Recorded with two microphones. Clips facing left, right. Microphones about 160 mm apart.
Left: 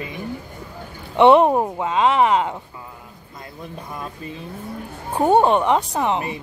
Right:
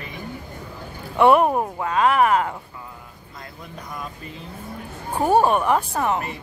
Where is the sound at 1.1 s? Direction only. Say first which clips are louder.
Left 3 dB; 20° left (ahead or behind).